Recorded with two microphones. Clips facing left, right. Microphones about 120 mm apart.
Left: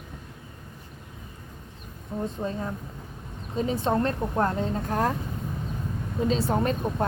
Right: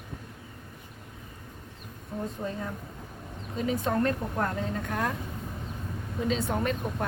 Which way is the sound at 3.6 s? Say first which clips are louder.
Left 2 dB; 30° left (ahead or behind).